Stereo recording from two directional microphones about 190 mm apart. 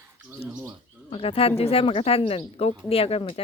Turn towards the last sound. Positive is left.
turn(degrees=30)  # may be behind; listen again after turning